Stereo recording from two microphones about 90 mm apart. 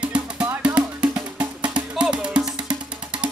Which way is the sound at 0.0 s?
15° right (ahead or behind).